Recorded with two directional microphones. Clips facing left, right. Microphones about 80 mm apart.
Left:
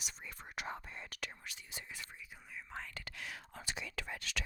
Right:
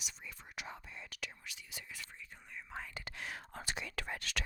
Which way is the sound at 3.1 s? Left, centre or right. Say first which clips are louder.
Right 2 dB; right.